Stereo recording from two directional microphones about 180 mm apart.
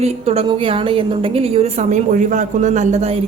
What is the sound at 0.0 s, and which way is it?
A woman's voice, 35° right (ahead or behind).